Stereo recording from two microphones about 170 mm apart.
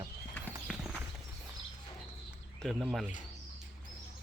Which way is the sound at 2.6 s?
Centre (ahead or behind).